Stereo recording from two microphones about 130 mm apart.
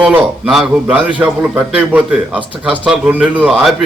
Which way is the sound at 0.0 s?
10° right (ahead or behind).